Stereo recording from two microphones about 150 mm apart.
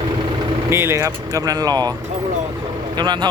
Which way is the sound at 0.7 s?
15° right (ahead or behind).